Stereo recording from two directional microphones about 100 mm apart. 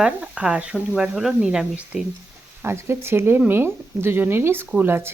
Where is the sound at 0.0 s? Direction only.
10° right (ahead or behind).